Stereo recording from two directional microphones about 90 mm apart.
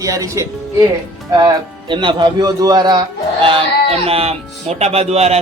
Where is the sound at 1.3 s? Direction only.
60° right (ahead or behind).